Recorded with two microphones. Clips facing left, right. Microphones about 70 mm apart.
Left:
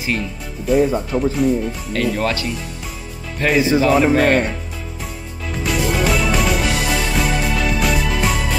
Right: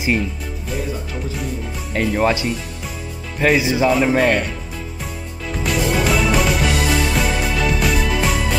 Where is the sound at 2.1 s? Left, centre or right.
Centre.